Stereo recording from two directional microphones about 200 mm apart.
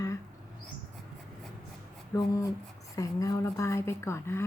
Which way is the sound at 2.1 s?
15° left (ahead or behind).